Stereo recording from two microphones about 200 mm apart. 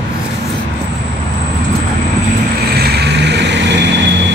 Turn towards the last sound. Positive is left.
turn(degrees=-65)  # may be behind; listen again after turning